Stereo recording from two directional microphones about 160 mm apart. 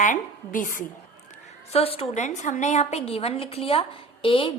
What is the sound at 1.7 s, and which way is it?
A woman's voice, 35° left (ahead or behind).